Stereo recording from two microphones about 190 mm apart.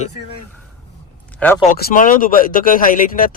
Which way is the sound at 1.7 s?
45° left (ahead or behind).